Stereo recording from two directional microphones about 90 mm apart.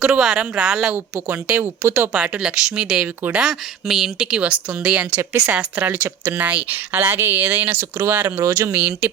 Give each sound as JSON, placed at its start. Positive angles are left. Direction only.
{"t": 0.0, "sound": "speech", "side_deg": -5}
{"t": 1.6, "sound": "speech", "side_deg": -25}
{"t": 2.1, "sound": "speech", "side_deg": -10}
{"t": 8.4, "sound": "speech", "side_deg": -35}
{"t": 8.7, "sound": "speech", "side_deg": -20}